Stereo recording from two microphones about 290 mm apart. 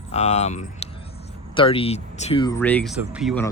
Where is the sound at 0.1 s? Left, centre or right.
Left; by 3.4 s centre.